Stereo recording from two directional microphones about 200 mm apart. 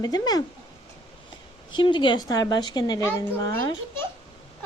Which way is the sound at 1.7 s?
25° left (ahead or behind).